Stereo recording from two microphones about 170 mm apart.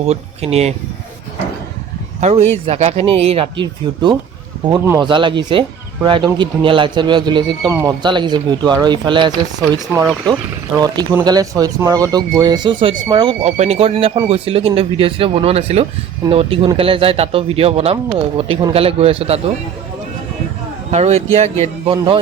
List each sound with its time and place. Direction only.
0.0 s speech: 40° right (ahead or behind)
2.2 s speech: 40° right (ahead or behind)
13.4 s speech: 40° right (ahead or behind)
20.9 s speech: 40° right (ahead or behind)